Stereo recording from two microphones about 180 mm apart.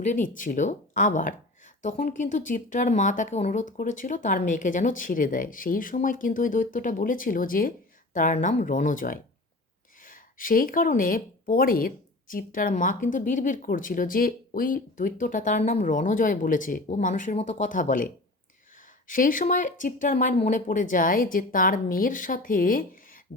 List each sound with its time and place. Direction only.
0.0 s speech: 45° left (ahead or behind)